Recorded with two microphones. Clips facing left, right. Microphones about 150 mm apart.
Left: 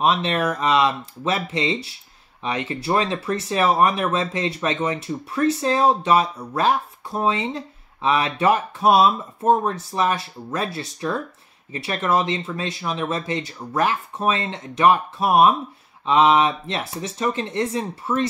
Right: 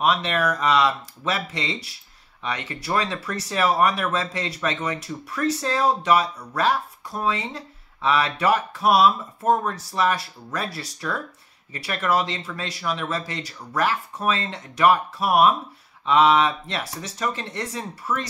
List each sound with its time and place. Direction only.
0.0 s speech: 25° left (ahead or behind)